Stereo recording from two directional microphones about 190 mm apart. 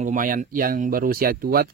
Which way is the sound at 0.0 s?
45° right (ahead or behind).